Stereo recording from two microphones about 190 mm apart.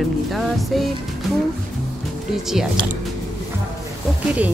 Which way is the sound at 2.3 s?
Centre (ahead or behind).